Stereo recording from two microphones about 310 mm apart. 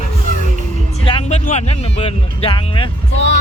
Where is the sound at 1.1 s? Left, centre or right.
Centre.